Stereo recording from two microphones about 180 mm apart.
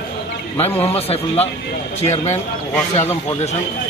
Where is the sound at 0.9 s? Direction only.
35° left (ahead or behind).